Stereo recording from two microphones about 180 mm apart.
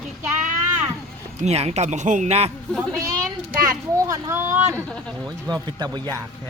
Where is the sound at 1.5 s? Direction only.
35° right (ahead or behind).